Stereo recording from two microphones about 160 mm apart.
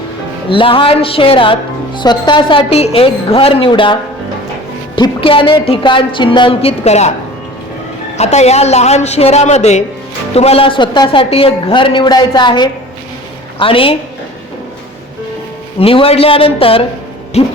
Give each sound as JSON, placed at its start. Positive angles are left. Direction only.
{"t": 0.5, "sound": "speech", "side_deg": 35}
{"t": 4.9, "sound": "speech", "side_deg": 30}
{"t": 8.2, "sound": "a woman's voice", "side_deg": 45}
{"t": 15.8, "sound": "speech", "side_deg": 35}